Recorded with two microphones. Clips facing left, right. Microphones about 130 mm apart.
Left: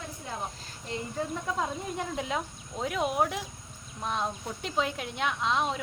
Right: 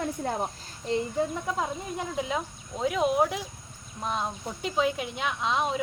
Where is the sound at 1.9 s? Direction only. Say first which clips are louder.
Right 3 dB; centre (ahead or behind).